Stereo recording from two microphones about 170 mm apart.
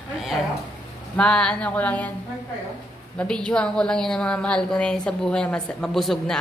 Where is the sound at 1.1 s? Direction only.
5° left (ahead or behind).